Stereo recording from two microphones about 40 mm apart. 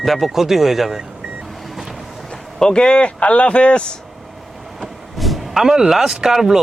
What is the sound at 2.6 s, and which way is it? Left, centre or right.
Speech, left.